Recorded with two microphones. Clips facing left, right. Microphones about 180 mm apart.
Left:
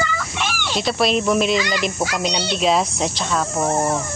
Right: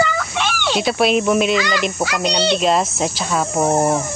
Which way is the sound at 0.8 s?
5° right (ahead or behind).